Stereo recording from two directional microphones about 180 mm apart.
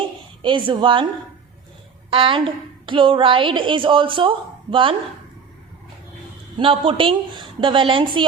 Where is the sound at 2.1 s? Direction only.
30° right (ahead or behind).